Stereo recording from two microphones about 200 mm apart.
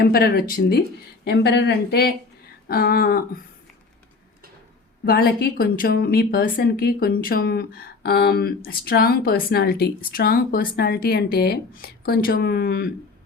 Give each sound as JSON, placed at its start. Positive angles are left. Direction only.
{"t": 0.0, "sound": "a woman's voice", "side_deg": 50}
{"t": 5.0, "sound": "a woman's voice", "side_deg": 50}